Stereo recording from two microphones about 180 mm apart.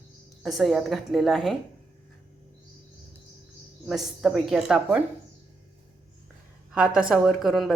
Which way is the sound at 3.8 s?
Centre (ahead or behind).